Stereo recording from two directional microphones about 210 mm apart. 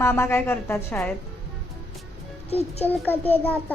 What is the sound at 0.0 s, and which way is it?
A woman's voice, 10° left (ahead or behind).